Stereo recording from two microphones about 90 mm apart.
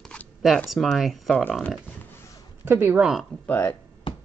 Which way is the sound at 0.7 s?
Centre (ahead or behind).